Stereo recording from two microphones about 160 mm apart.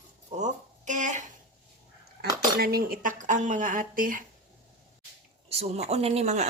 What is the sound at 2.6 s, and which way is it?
A woman's voice, 75° right (ahead or behind).